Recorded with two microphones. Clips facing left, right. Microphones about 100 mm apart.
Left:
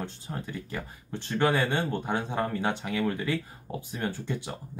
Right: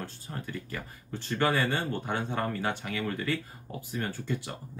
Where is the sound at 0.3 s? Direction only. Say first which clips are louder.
Even; 20° left (ahead or behind).